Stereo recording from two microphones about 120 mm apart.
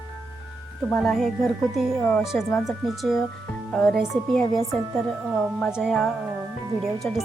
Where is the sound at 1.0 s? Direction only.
5° left (ahead or behind).